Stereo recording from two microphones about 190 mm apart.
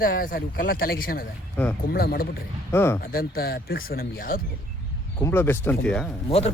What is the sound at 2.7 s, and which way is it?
Speech, 15° left (ahead or behind).